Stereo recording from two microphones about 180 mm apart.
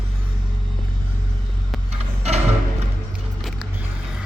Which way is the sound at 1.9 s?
35° right (ahead or behind).